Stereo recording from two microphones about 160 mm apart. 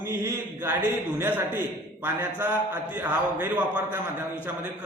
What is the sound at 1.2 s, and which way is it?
A man's voice, 15° right (ahead or behind).